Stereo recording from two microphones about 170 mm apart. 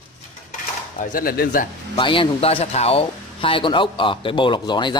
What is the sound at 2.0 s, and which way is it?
Speech, 30° left (ahead or behind).